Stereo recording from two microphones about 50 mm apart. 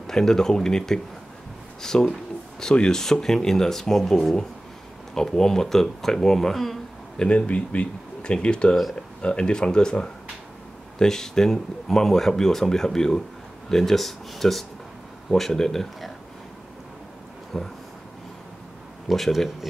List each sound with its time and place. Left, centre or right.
0.0 s speech: centre
7.2 s speech: left; by 16.1 s centre
17.5 s speech: centre
19.0 s speech: centre